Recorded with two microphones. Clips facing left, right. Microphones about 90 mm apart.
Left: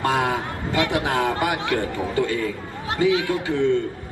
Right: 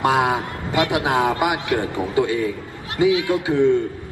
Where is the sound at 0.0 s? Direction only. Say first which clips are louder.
Right 3 dB; 15° right (ahead or behind).